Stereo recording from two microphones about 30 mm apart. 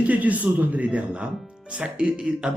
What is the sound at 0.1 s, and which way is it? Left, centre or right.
Speech, right.